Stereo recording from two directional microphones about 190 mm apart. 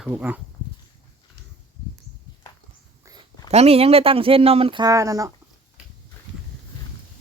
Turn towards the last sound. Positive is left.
turn(degrees=-15)  # may be behind; listen again after turning